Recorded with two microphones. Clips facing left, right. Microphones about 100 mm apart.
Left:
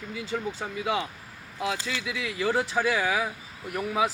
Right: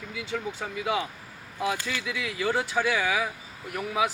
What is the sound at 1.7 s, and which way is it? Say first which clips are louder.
Speech: even; 20° left (ahead or behind).